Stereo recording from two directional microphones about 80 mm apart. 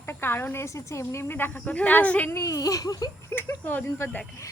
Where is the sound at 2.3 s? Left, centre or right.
Left.